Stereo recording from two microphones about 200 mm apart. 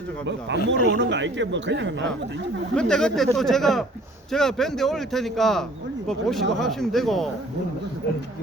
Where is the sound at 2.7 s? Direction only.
5° left (ahead or behind).